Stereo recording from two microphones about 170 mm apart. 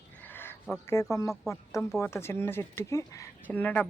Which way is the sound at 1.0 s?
15° left (ahead or behind).